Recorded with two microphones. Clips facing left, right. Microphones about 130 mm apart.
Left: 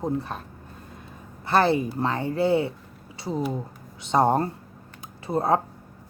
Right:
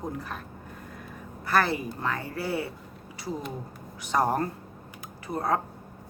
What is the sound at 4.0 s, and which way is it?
Speech, 25° left (ahead or behind).